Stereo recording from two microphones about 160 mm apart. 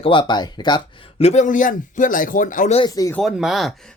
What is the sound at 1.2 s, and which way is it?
A man's voice, 50° left (ahead or behind).